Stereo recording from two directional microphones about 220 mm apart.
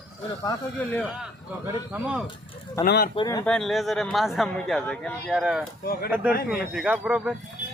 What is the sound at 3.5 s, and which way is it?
A man's voice, centre (ahead or behind).